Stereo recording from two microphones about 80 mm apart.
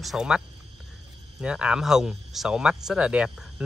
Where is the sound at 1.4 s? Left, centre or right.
Centre.